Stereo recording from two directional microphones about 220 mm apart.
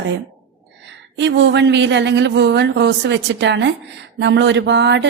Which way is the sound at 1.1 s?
55° right (ahead or behind).